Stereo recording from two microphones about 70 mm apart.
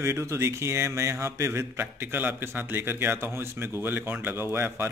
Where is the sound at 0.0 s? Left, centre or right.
Right.